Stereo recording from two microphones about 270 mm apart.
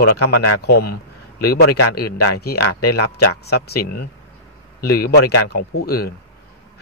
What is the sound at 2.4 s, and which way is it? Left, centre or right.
Speech, left.